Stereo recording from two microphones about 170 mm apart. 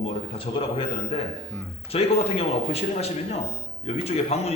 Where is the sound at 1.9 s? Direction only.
35° left (ahead or behind).